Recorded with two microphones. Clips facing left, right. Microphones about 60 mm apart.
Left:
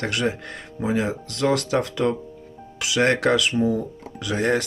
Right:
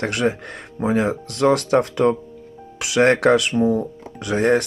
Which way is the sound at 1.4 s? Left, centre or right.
Right.